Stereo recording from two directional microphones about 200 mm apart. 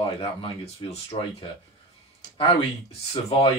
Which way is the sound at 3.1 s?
30° left (ahead or behind).